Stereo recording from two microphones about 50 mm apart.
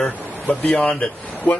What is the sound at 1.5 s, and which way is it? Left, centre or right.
Speech, left.